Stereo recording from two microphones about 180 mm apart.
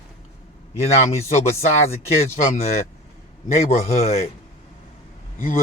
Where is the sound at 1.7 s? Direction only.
35° left (ahead or behind).